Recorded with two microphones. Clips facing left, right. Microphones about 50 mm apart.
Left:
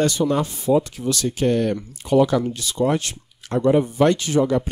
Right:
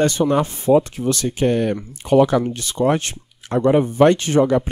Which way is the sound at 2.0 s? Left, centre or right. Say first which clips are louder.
Right 3 dB; right.